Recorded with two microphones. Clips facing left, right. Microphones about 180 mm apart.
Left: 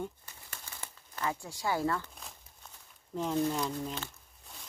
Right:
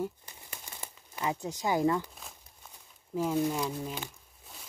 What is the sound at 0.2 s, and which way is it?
Crumpling, 15° right (ahead or behind).